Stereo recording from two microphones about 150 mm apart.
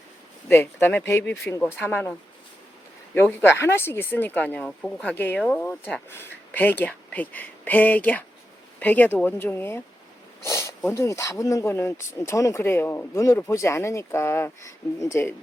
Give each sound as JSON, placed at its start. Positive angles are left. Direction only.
{"t": 0.4, "sound": "speech", "side_deg": 15}
{"t": 3.2, "sound": "speech", "side_deg": 15}
{"t": 10.4, "sound": "a sound", "side_deg": 15}
{"t": 10.8, "sound": "speech", "side_deg": 20}